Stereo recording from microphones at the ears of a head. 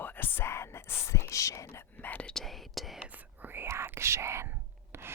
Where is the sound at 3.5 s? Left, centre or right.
Right.